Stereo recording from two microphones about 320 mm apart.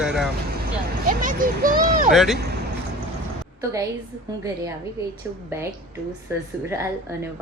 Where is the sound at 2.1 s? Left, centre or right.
Centre.